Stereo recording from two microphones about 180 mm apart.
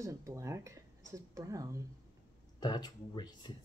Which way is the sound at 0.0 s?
15° right (ahead or behind).